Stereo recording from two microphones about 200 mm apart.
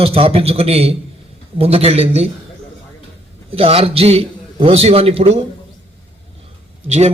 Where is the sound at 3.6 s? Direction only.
30° right (ahead or behind).